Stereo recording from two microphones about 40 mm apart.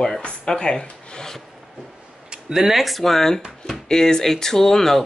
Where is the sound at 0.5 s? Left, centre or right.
Centre.